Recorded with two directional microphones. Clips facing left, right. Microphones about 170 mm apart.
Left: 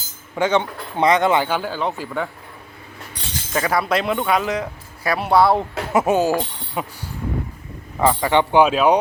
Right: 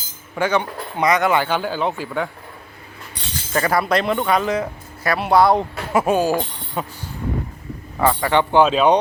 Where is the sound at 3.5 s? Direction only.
Centre (ahead or behind).